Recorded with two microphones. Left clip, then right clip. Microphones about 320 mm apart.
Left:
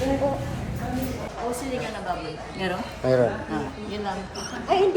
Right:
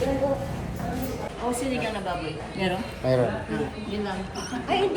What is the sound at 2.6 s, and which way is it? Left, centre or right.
Speech, left.